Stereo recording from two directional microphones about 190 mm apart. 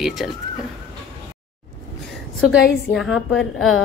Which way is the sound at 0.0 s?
Centre (ahead or behind).